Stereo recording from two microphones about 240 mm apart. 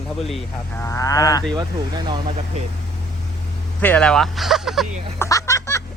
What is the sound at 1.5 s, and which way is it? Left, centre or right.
Speech, centre.